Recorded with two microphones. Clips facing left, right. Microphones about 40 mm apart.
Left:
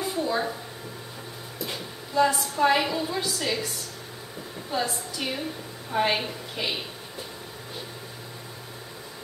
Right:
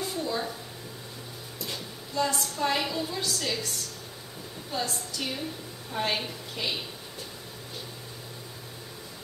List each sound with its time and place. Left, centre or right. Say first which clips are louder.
0.0 s a sound: left 4 dB; centre
1.6 s music: left 3 dB; centre
2.3 s a woman's voice: left 6 dB; centre